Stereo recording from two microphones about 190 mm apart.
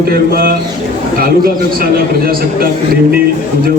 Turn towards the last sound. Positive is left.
turn(degrees=-50)  # may be behind; listen again after turning